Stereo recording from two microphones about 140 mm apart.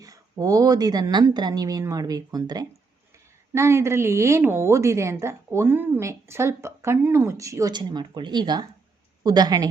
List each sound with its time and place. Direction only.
0.0 s a woman's voice: 25° right (ahead or behind)